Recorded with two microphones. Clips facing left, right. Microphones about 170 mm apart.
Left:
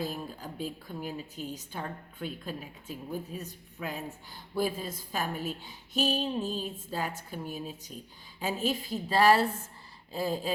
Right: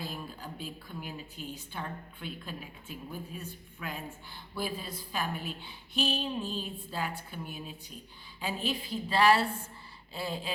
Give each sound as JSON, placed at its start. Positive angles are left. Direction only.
{"t": 0.0, "sound": "a woman's voice", "side_deg": 45}